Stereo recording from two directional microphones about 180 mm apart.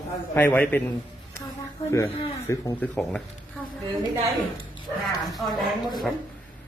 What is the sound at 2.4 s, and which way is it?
Speech, 15° left (ahead or behind).